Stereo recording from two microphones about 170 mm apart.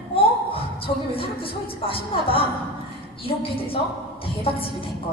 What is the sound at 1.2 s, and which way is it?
Speech, 30° left (ahead or behind).